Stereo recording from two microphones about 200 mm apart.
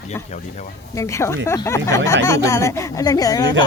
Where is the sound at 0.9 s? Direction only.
15° left (ahead or behind).